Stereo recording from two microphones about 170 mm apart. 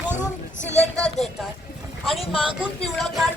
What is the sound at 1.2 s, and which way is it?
Speech, 40° left (ahead or behind).